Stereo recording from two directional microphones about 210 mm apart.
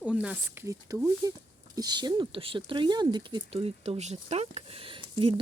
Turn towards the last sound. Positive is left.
turn(degrees=-25)  # may be behind; listen again after turning